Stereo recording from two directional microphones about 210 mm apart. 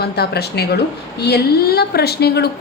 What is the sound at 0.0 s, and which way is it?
A woman's voice, 50° left (ahead or behind).